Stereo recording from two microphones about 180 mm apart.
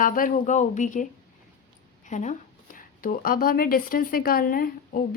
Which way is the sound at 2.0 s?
40° left (ahead or behind).